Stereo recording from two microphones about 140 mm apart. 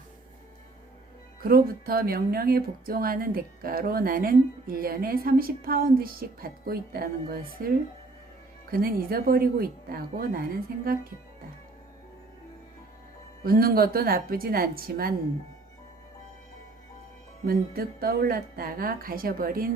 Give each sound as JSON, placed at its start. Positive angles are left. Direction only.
{"t": 1.4, "sound": "speech", "side_deg": -90}
{"t": 13.4, "sound": "speech", "side_deg": -90}
{"t": 17.4, "sound": "speech", "side_deg": -90}